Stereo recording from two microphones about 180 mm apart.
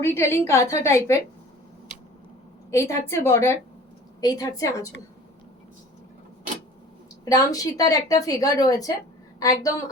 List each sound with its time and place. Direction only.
0.0 s a woman's voice: 15° left (ahead or behind)
2.6 s a woman's voice: 15° left (ahead or behind)
7.3 s a woman's voice: 20° left (ahead or behind)